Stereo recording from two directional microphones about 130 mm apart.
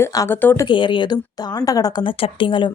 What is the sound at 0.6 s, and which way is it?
A woman's voice, 40° left (ahead or behind).